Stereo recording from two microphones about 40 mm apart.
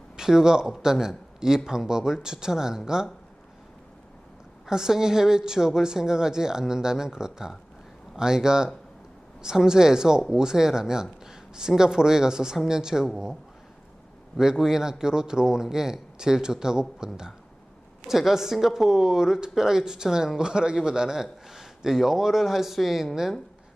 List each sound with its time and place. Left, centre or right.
0.2 s speech: centre
4.6 s speech: centre
14.3 s speech: centre